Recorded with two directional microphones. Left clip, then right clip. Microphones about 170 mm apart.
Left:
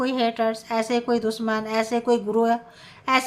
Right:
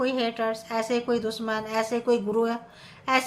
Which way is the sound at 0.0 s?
20° left (ahead or behind).